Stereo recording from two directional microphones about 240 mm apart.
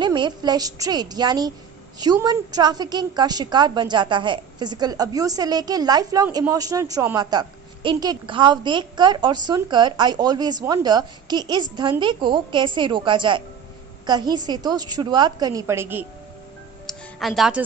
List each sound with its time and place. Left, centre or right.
0.0 s a woman's voice: centre
16.8 s music: centre